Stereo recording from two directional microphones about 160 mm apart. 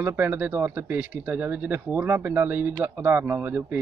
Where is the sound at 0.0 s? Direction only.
10° right (ahead or behind).